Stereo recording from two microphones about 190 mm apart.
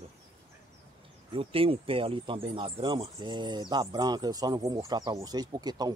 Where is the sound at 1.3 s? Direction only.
30° right (ahead or behind).